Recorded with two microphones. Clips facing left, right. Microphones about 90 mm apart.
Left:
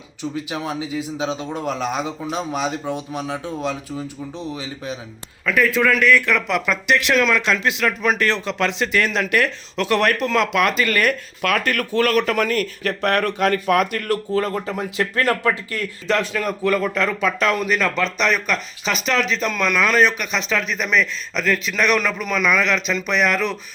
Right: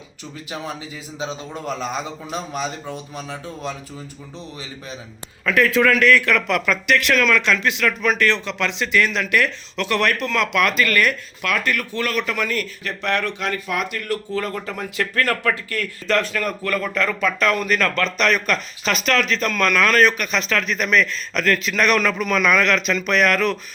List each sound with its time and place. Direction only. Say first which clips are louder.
0.5 s speech: left 1 dB; 10° left (ahead or behind)
1.2 s a man's voice: left 1 dB; 80° left
1.5 s speech: even; 10° left (ahead or behind)
5.5 s speech: right 1 dB; 5° left (ahead or behind)
6.9 s speech: left 1 dB; 20° left (ahead or behind)
11.4 s a man's voice: left 2 dB; 45° left (ahead or behind); by 21.6 s 10° left (ahead or behind)
21.6 s speech: right 1 dB; centre (ahead or behind)
21.9 s speech: right 2 dB; 10° left (ahead or behind)